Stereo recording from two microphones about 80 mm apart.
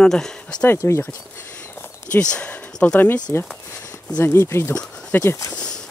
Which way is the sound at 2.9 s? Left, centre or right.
Left.